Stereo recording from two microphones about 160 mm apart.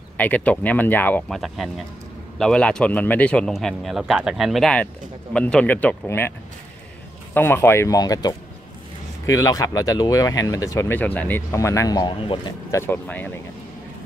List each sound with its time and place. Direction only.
0.2 s speech: 10° left (ahead or behind)
1.4 s a man's voice: centre (ahead or behind)
7.3 s speech: 15° left (ahead or behind); by 12.5 s 30° left (ahead or behind)
12.7 s speech: 15° left (ahead or behind)